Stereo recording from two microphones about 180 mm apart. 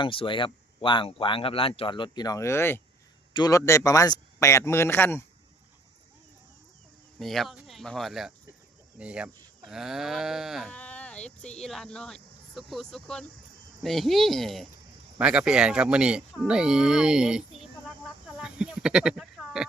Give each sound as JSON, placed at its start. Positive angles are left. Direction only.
{"t": 0.0, "sound": "speech", "side_deg": 30}
{"t": 7.2, "sound": "speech", "side_deg": 0}
{"t": 18.3, "sound": "a sound", "side_deg": -5}